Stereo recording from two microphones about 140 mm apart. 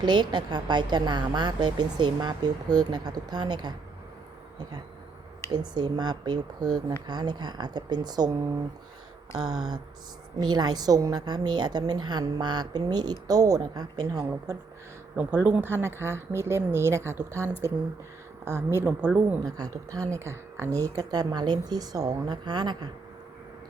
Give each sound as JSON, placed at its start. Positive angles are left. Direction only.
{"t": 0.0, "sound": "a woman's voice", "side_deg": -35}
{"t": 5.5, "sound": "a woman's voice", "side_deg": -30}
{"t": 10.3, "sound": "a woman's voice", "side_deg": -30}
{"t": 15.1, "sound": "a woman's voice", "side_deg": -10}
{"t": 19.5, "sound": "a woman's voice", "side_deg": -25}